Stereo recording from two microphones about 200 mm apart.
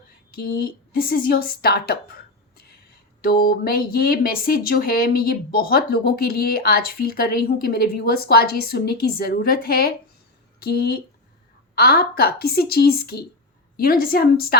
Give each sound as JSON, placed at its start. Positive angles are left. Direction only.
{"t": 0.3, "sound": "speech", "side_deg": 50}
{"t": 3.4, "sound": "speech", "side_deg": 50}